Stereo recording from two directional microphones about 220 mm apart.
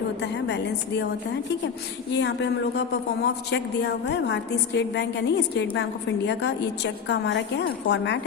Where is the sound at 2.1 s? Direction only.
55° left (ahead or behind).